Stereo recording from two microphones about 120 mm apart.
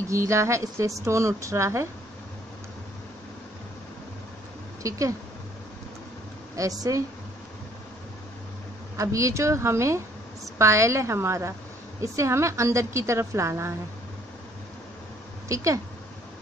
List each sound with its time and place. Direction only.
0.1 s a woman's voice: 25° right (ahead or behind)
4.8 s a woman's voice: 25° right (ahead or behind)
6.5 s a woman's voice: 30° right (ahead or behind)
8.9 s a woman's voice: 25° right (ahead or behind)
15.4 s speech: 25° right (ahead or behind)